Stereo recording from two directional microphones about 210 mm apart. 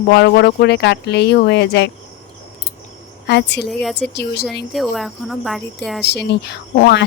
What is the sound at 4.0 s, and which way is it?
Speech, 50° left (ahead or behind).